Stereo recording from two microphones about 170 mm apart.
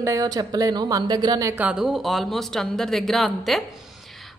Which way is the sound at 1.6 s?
5° right (ahead or behind).